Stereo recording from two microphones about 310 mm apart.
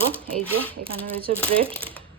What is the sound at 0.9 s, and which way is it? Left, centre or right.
Speech, centre.